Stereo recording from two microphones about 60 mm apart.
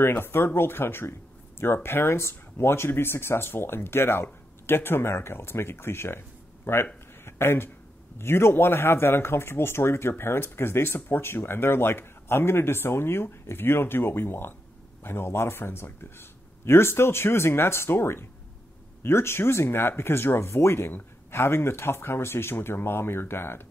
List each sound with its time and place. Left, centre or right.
0.0 s speech: left